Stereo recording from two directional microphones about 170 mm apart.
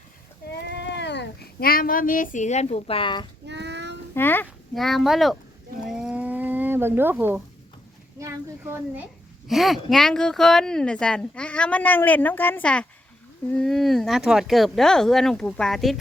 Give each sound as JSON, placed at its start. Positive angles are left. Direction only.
{"t": 0.5, "sound": "cat", "side_deg": 85}
{"t": 3.4, "sound": "child singing", "side_deg": -90}
{"t": 4.1, "sound": "a child's voice", "side_deg": 10}
{"t": 4.7, "sound": "speech", "side_deg": 0}
{"t": 5.8, "sound": "livestock", "side_deg": -5}
{"t": 8.2, "sound": "a sound", "side_deg": -15}
{"t": 9.5, "sound": "speech", "side_deg": 0}